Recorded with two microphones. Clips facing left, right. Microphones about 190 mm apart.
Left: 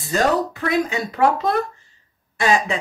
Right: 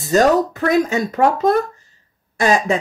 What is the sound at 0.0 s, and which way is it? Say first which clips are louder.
Speech: right 5 dB; 40° right (ahead or behind).